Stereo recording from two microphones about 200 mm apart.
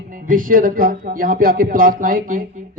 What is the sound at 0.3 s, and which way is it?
A man's voice, 45° right (ahead or behind).